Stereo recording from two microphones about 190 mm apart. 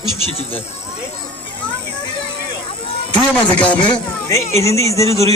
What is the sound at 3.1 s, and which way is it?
Speech, 25° left (ahead or behind).